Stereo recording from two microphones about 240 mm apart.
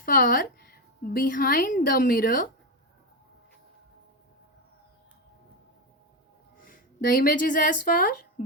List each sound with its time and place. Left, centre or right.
0.0 s a woman's voice: left
6.7 s a woman's voice: left